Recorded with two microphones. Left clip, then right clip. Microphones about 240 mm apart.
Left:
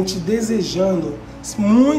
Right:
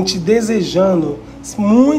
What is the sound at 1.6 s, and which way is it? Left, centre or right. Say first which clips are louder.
Speech: right 3 dB; centre.